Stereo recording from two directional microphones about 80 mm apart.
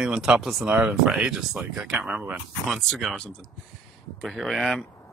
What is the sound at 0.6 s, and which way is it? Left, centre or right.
Speech, centre.